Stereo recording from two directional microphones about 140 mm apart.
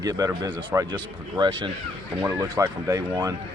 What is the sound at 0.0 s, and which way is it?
Speech, 25° right (ahead or behind).